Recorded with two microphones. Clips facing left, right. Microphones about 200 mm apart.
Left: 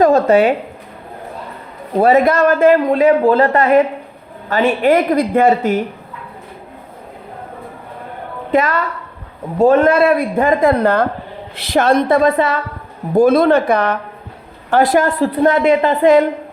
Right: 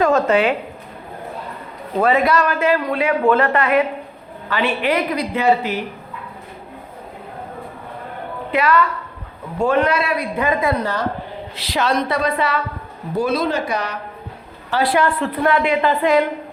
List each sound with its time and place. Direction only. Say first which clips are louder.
0.0 s speech: left 5 dB; 35° left (ahead or behind)
2.0 s a man's voice: left 5 dB; 40° left (ahead or behind)
8.5 s a woman's voice: left 2 dB; 45° left (ahead or behind)